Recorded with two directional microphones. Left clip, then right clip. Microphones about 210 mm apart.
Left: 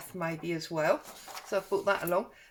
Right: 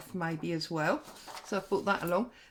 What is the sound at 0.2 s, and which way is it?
Speech, 35° right (ahead or behind).